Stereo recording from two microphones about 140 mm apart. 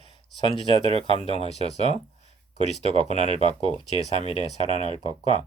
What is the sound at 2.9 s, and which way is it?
Speech, 40° right (ahead or behind).